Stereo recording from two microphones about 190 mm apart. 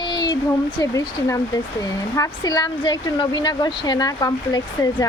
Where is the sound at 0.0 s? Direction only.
25° left (ahead or behind).